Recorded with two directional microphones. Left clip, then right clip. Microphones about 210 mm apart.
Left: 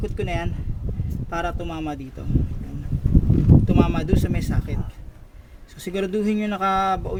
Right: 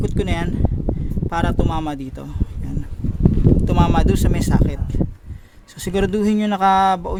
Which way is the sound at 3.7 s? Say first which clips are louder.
Right 4 dB; 50° right (ahead or behind).